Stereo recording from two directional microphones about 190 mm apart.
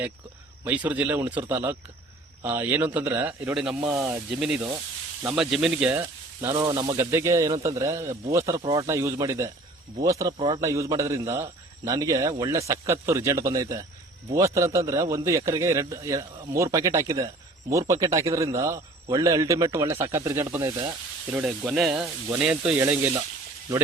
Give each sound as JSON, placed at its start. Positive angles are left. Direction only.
{"t": 0.6, "sound": "a man's voice", "side_deg": -10}
{"t": 10.3, "sound": "speech", "side_deg": -30}
{"t": 10.6, "sound": "a man's voice", "side_deg": -15}
{"t": 21.7, "sound": "a man's voice", "side_deg": 0}